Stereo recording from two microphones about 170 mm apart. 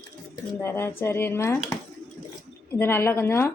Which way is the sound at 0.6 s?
15° left (ahead or behind).